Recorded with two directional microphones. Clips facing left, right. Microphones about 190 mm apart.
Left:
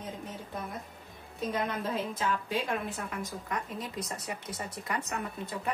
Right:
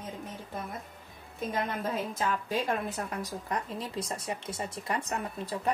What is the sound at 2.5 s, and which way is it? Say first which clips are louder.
A woman's voice: right 2 dB; 40° right (ahead or behind).